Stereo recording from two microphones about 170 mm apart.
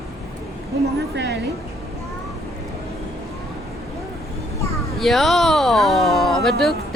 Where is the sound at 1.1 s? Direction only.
90° right.